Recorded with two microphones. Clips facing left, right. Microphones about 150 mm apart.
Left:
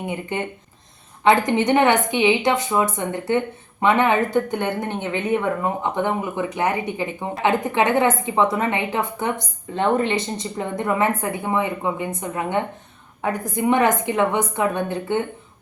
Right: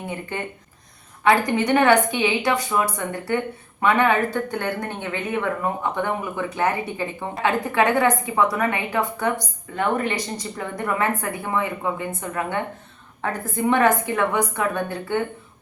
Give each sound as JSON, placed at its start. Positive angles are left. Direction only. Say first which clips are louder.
{"t": 0.0, "sound": "a woman's voice", "louder": "left 3 dB", "side_deg": 20}